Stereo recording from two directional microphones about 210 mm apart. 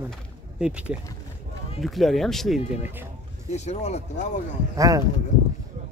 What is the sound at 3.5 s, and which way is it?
Speech, 30° left (ahead or behind).